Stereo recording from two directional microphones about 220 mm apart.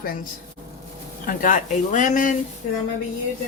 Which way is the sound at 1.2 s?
35° left (ahead or behind).